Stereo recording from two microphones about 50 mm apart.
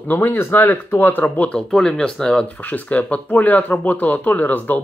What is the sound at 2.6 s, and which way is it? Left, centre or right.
Speech, left.